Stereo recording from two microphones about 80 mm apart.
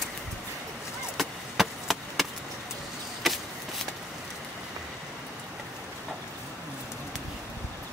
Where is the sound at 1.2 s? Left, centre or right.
Centre.